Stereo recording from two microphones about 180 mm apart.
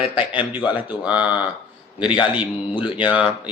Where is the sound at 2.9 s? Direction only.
5° right (ahead or behind).